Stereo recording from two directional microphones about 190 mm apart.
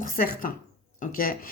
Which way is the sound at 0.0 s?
50° left (ahead or behind).